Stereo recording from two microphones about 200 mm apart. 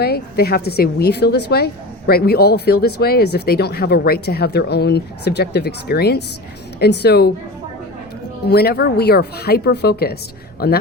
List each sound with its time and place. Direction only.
0.0 s a woman's voice: 50° left (ahead or behind)
8.4 s a woman's voice: 55° left (ahead or behind)